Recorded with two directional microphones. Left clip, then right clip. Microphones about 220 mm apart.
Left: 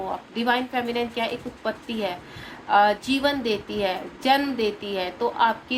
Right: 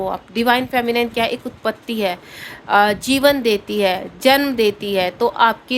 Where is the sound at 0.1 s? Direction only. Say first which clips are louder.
Right 6 dB; 55° right (ahead or behind).